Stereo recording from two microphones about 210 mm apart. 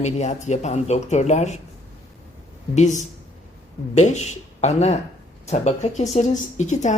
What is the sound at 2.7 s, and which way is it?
A woman's voice, 35° left (ahead or behind).